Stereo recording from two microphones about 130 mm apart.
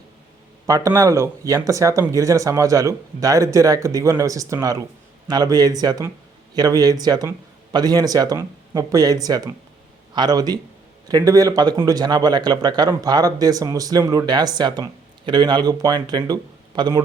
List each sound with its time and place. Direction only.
0.7 s speech: 25° right (ahead or behind)